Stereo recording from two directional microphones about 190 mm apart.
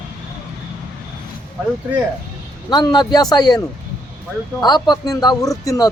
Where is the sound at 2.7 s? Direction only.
20° left (ahead or behind).